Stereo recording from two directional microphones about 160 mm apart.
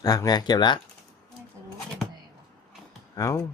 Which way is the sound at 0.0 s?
25° left (ahead or behind).